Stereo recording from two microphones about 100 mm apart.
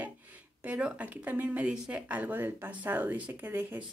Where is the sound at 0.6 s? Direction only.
10° right (ahead or behind).